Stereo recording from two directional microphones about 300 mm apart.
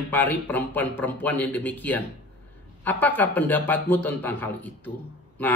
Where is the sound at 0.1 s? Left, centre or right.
Centre.